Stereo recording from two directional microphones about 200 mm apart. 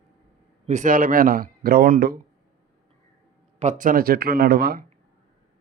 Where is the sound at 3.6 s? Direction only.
35° right (ahead or behind).